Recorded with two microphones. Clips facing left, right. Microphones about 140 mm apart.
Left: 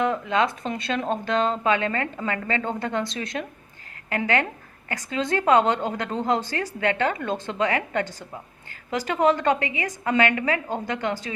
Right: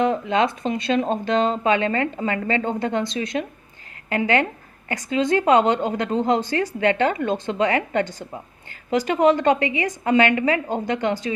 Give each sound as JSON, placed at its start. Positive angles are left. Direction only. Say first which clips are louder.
{"t": 0.0, "sound": "a woman's voice", "louder": "right 3 dB", "side_deg": -25}